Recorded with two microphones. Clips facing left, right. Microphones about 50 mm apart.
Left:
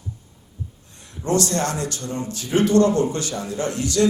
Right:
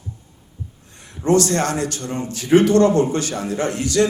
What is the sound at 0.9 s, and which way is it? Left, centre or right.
Speech, right.